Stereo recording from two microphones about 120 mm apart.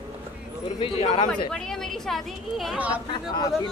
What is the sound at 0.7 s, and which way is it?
Speech, 55° left (ahead or behind).